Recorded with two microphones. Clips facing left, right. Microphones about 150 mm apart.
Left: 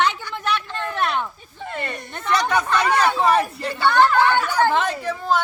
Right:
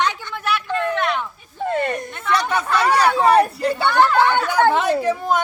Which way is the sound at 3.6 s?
5° right (ahead or behind).